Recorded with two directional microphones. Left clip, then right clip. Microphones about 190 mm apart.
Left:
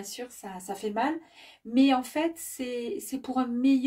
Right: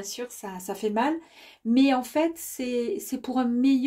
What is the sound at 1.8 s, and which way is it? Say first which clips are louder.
Speech: right 2 dB; 45° right (ahead or behind).